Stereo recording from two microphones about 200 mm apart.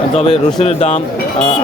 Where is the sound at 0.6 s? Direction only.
30° left (ahead or behind).